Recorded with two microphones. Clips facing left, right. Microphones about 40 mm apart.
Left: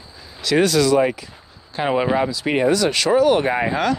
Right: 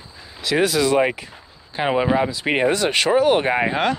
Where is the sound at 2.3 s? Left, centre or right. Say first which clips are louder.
Left 1 dB; right.